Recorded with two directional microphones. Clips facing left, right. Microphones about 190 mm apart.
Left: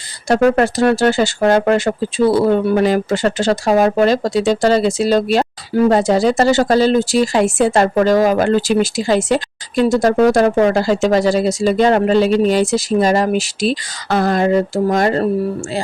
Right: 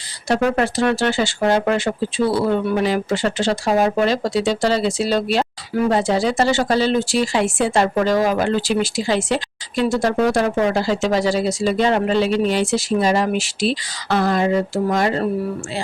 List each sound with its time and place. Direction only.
0.3 s speech: 50° left (ahead or behind)